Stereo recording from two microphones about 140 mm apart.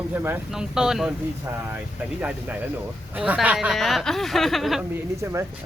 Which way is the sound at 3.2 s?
10° right (ahead or behind).